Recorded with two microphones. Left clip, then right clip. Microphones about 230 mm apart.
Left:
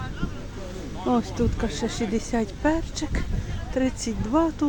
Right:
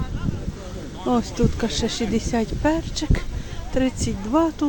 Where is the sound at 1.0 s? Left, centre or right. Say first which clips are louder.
Right 2 dB; centre.